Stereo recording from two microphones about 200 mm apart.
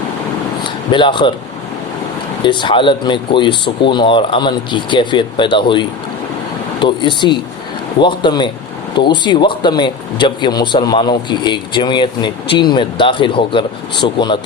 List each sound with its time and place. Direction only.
0.6 s a sound: 25° left (ahead or behind)
2.4 s speech: 25° left (ahead or behind)
6.8 s speech: 25° left (ahead or behind)